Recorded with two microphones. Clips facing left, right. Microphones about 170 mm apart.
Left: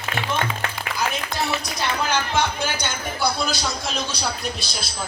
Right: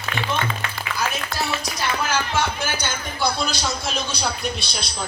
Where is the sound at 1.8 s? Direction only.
15° left (ahead or behind).